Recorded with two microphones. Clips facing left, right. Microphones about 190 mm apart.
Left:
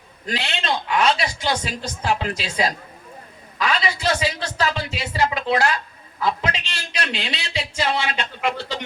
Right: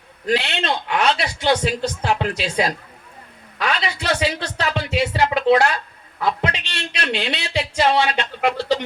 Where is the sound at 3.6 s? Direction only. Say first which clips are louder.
Left 1 dB; 60° right (ahead or behind).